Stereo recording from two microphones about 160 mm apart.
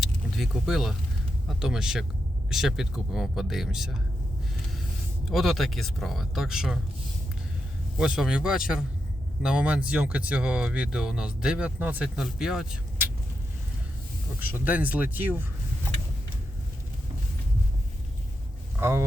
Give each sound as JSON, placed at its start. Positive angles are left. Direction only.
{"t": 0.0, "sound": "vehicle", "side_deg": 0}
{"t": 1.5, "sound": "speech", "side_deg": -5}
{"t": 5.3, "sound": "speech", "side_deg": 0}
{"t": 7.9, "sound": "speech", "side_deg": -5}
{"t": 14.3, "sound": "speech", "side_deg": -10}
{"t": 18.8, "sound": "speech", "side_deg": -15}